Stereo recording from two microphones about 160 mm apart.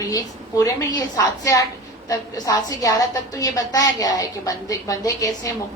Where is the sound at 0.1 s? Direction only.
20° left (ahead or behind).